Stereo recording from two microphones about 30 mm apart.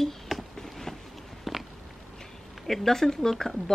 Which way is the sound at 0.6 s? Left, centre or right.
Centre.